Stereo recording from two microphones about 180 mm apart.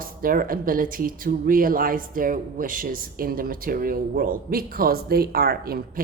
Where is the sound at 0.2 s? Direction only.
50° right (ahead or behind).